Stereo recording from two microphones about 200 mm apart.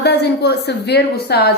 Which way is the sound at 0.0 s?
55° left (ahead or behind).